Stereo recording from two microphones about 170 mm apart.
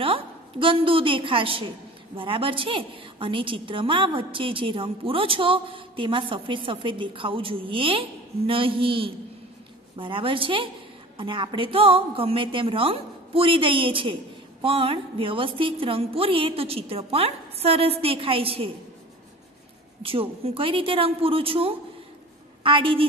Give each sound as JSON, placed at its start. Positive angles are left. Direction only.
{"t": 0.0, "sound": "a woman's voice", "side_deg": -30}
{"t": 20.0, "sound": "a woman's voice", "side_deg": -35}